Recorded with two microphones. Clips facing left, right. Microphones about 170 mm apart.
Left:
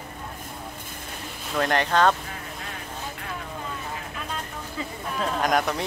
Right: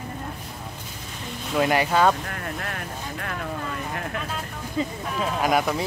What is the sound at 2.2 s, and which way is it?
Vehicle, 60° right (ahead or behind).